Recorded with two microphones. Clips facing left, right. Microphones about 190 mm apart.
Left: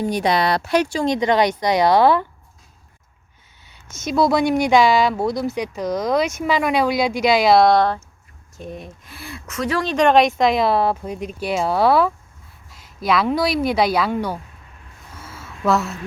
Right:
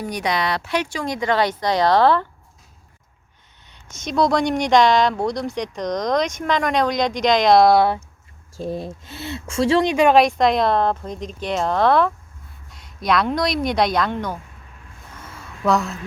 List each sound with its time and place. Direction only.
0.0 s speech: 30° left (ahead or behind); by 2.2 s 10° left (ahead or behind)
3.7 s speech: 5° left (ahead or behind)
8.5 s speech: 30° right (ahead or behind)
9.8 s speech: 10° right (ahead or behind); by 14.3 s 10° left (ahead or behind)
15.1 s a sound: 5° left (ahead or behind)